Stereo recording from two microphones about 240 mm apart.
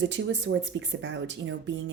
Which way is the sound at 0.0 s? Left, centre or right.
Right.